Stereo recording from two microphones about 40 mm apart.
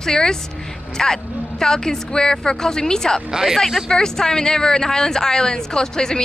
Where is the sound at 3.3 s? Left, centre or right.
Centre.